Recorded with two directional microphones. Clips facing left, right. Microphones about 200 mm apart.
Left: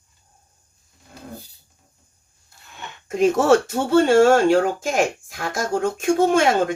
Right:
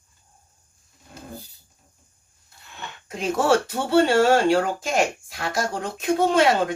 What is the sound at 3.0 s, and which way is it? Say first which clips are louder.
Speech: left 5 dB; 50° left (ahead or behind).